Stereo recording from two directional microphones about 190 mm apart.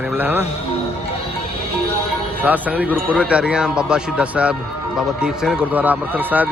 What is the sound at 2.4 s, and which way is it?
A man's voice, 10° right (ahead or behind).